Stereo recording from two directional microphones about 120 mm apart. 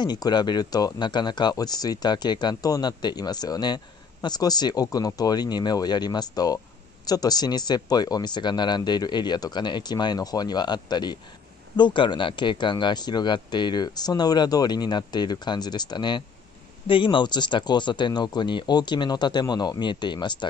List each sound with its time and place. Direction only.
0.0 s speech: 35° left (ahead or behind)